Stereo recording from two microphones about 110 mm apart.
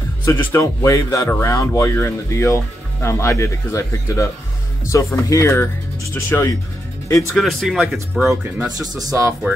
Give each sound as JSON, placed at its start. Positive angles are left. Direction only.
{"t": 0.2, "sound": "a man's voice", "side_deg": 25}
{"t": 7.3, "sound": "speech", "side_deg": 0}
{"t": 8.7, "sound": "speech", "side_deg": -35}